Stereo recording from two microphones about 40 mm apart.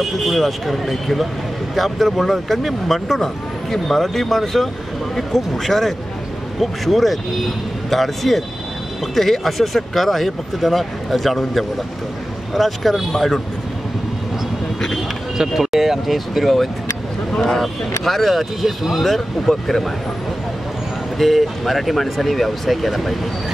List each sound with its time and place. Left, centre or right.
0.0 s speech: centre
15.3 s speech: centre
21.2 s speech: centre